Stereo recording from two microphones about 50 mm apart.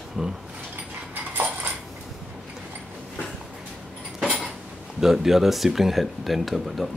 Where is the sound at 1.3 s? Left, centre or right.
Right.